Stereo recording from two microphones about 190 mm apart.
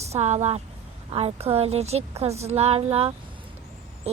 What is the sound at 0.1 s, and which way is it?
Speech, 35° right (ahead or behind).